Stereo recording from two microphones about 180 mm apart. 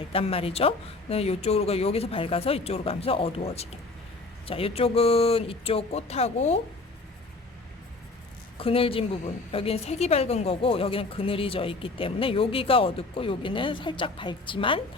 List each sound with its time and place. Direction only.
0.1 s a woman's voice: 30° left (ahead or behind)
8.5 s a woman's voice: 30° left (ahead or behind)